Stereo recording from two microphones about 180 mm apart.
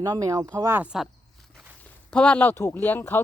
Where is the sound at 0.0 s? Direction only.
20° right (ahead or behind).